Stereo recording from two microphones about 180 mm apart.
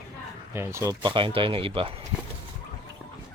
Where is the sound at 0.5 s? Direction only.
15° right (ahead or behind).